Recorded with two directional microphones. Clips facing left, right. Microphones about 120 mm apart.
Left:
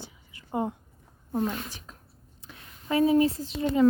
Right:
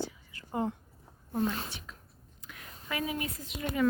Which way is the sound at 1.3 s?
25° left (ahead or behind).